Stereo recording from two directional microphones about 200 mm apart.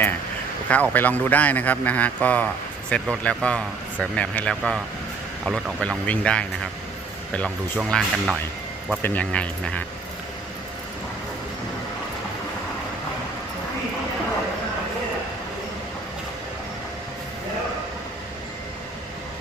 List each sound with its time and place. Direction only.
0.7 s a man's voice: 10° left (ahead or behind)
7.8 s a man's voice: centre (ahead or behind)